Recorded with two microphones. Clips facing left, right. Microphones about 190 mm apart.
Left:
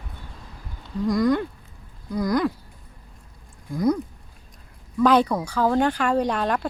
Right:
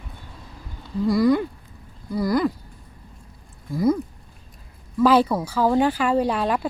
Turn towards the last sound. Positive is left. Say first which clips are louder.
# right 1 dB
turn(degrees=-5)  # may be behind; listen again after turning